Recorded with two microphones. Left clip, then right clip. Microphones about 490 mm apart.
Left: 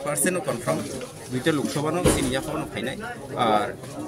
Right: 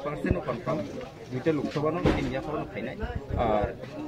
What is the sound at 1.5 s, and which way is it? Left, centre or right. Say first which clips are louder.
Speech: left 3 dB; right.